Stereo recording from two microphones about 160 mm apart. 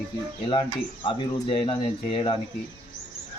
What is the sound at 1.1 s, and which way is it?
Speech, 30° left (ahead or behind).